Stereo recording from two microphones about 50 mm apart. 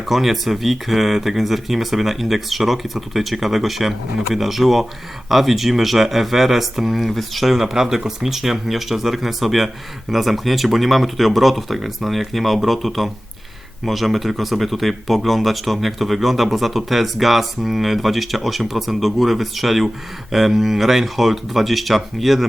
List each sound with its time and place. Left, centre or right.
0.0 s speech: centre